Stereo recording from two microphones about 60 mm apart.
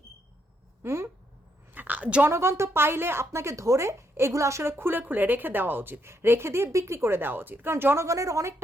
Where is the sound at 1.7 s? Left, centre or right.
Right.